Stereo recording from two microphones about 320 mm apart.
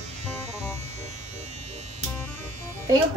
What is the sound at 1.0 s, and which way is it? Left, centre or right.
Electric shaver, right.